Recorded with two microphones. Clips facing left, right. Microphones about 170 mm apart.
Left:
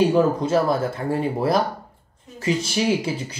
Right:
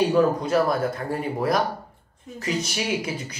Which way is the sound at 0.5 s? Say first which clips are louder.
Left 1 dB; 25° left (ahead or behind).